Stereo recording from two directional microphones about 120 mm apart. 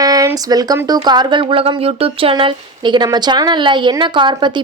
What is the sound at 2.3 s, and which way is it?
A woman's voice, 40° right (ahead or behind).